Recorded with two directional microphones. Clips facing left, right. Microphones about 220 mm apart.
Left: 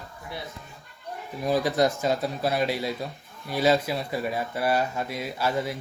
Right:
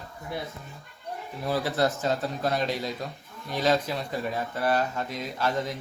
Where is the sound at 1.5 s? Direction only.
15° left (ahead or behind).